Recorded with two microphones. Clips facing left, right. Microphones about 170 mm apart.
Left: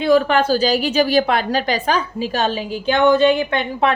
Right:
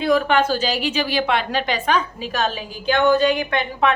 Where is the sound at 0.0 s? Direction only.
30° left (ahead or behind).